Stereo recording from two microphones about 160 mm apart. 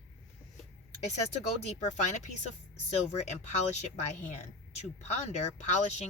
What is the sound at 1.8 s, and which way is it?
A woman's voice, 45° left (ahead or behind).